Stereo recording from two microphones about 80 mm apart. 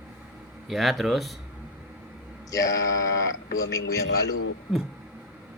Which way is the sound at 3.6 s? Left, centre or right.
Left.